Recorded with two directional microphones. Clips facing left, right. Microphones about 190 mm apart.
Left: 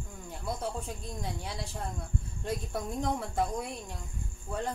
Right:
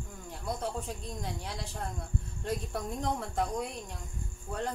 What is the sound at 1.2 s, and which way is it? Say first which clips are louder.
A woman's voice: left 1 dB; centre (ahead or behind).